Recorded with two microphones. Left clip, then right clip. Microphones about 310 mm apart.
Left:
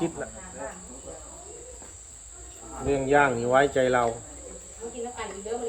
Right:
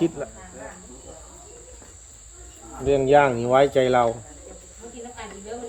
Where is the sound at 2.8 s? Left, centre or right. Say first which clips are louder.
Right 5 dB; right.